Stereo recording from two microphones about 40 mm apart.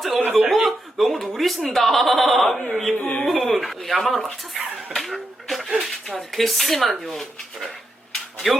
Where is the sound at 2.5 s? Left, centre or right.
Left.